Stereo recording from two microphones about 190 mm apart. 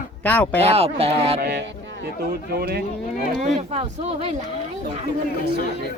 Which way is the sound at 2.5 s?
55° right (ahead or behind).